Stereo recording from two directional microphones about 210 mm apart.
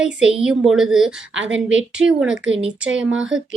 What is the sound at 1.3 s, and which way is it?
Speech, 65° right (ahead or behind).